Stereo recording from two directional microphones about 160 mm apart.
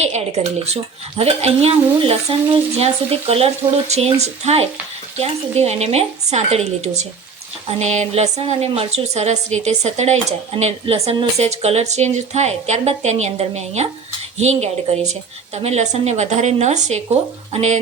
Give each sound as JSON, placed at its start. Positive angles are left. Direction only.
{"t": 0.0, "sound": "speech", "side_deg": -45}